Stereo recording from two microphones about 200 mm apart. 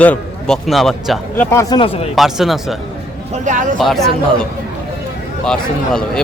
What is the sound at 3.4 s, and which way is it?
Speech, 40° right (ahead or behind).